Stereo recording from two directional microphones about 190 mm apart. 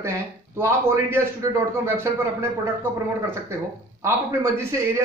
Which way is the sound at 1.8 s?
15° right (ahead or behind).